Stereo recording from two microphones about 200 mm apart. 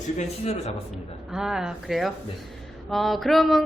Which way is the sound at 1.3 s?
5° right (ahead or behind).